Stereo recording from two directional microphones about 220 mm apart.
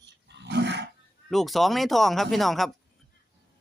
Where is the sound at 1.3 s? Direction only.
Centre (ahead or behind).